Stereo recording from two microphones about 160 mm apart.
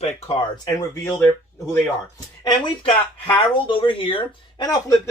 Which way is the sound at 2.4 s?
30° left (ahead or behind).